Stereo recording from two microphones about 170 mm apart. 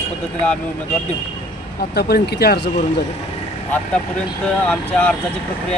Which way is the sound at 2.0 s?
70° left (ahead or behind).